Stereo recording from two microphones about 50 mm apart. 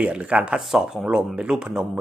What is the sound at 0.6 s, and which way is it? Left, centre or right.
Speech, centre.